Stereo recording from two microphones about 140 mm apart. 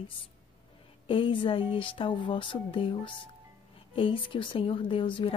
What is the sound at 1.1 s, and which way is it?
Speech, 40° left (ahead or behind).